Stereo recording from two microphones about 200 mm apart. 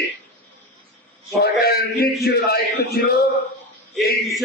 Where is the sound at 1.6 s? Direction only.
50° left (ahead or behind).